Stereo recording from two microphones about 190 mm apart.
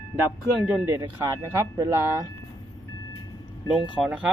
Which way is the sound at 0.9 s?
20° right (ahead or behind).